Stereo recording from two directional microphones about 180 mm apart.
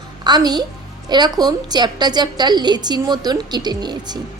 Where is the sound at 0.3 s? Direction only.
25° right (ahead or behind).